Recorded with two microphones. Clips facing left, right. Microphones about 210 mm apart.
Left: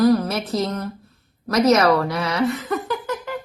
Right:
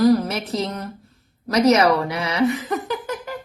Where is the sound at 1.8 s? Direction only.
15° right (ahead or behind).